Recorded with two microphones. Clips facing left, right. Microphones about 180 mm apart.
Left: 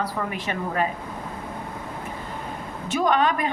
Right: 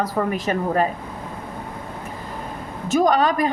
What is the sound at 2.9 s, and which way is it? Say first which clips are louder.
Speech: right 4 dB; 40° right (ahead or behind).